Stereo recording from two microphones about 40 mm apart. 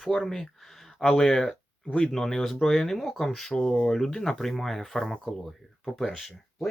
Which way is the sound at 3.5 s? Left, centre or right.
Centre.